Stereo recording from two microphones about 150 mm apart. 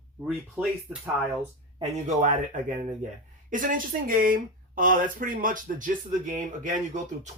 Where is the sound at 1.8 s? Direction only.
55° right (ahead or behind).